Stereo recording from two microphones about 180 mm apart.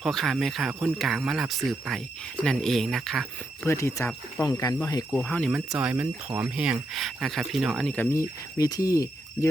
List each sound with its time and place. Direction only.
0.0 s speech: centre (ahead or behind)
3.7 s speech: 15° left (ahead or behind)
5.2 s speech: 10° left (ahead or behind)
5.5 s speech: 5° right (ahead or behind)
8.5 s speech: 20° left (ahead or behind)